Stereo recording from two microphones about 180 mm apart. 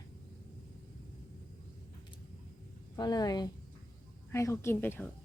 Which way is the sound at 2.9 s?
20° left (ahead or behind).